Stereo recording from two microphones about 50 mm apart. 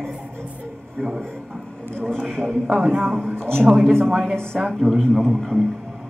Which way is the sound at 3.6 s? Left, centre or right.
Centre.